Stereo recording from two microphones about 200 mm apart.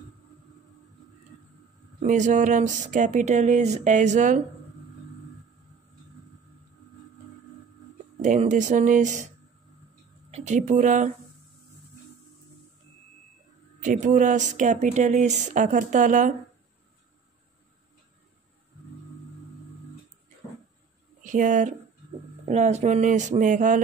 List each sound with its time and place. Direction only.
2.0 s speech: 40° right (ahead or behind)
8.2 s speech: 40° right (ahead or behind)
10.3 s speech: 35° right (ahead or behind)
13.8 s speech: 40° right (ahead or behind)
21.2 s speech: 40° right (ahead or behind)